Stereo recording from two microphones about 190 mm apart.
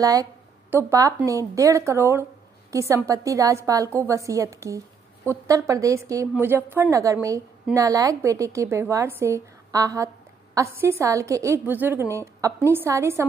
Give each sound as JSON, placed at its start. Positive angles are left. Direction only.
{"t": 0.0, "sound": "a woman's voice", "side_deg": -20}